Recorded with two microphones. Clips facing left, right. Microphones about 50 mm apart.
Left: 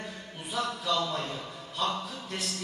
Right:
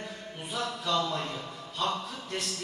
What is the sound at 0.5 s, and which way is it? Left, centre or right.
Speech, right.